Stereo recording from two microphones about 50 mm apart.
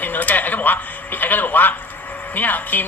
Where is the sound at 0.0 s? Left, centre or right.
Left.